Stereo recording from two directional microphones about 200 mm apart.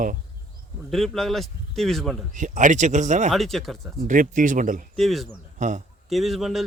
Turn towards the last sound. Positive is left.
turn(degrees=0)  # may be behind; listen again after turning